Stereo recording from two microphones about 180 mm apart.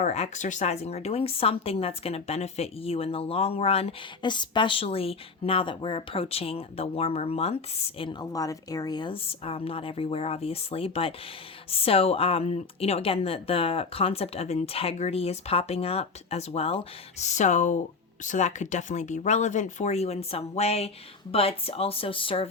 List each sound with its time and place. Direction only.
0.0 s a woman's voice: 40° left (ahead or behind)